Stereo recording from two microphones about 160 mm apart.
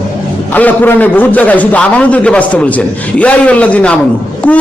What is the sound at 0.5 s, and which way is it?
A man's voice, 10° left (ahead or behind).